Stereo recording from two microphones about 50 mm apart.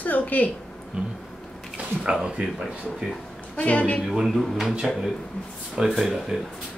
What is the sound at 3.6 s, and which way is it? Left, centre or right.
Speech, left.